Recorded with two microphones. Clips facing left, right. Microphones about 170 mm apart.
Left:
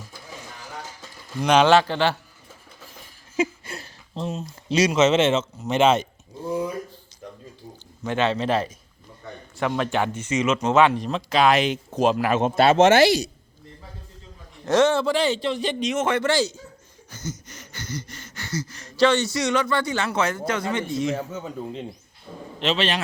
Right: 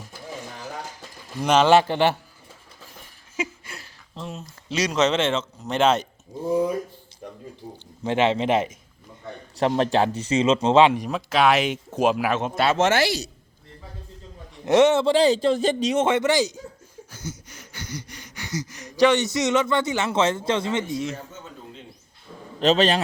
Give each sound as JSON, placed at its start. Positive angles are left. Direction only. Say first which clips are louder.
{"t": 1.4, "sound": "a sound", "louder": "even", "side_deg": -5}
{"t": 3.3, "sound": "speech", "louder": "left 6 dB", "side_deg": 30}
{"t": 8.0, "sound": "a man's voice", "louder": "right 2 dB", "side_deg": -25}
{"t": 9.6, "sound": "a man's voice", "louder": "right 3 dB", "side_deg": -35}
{"t": 10.9, "sound": "a sound", "louder": "even", "side_deg": -10}
{"t": 12.4, "sound": "speech", "louder": "left 5 dB", "side_deg": 25}
{"t": 14.6, "sound": "a man's voice", "louder": "right 2 dB", "side_deg": -20}
{"t": 17.1, "sound": "a sound", "louder": "left 3 dB", "side_deg": -10}
{"t": 20.9, "sound": "speech", "louder": "left 3 dB", "side_deg": -5}
{"t": 21.2, "sound": "speech", "louder": "left 9 dB", "side_deg": 65}
{"t": 22.3, "sound": "a man's voice", "louder": "left 4 dB", "side_deg": 35}
{"t": 22.6, "sound": "a man's voice", "louder": "right 5 dB", "side_deg": -40}